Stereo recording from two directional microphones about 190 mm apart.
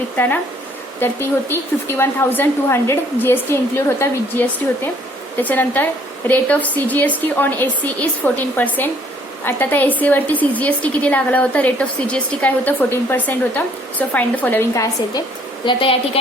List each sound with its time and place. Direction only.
0.2 s a woman's voice: 10° left (ahead or behind)
15.6 s a woman's voice: 25° left (ahead or behind)